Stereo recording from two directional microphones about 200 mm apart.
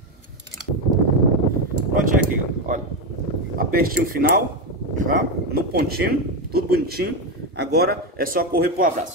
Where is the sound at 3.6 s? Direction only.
45° right (ahead or behind).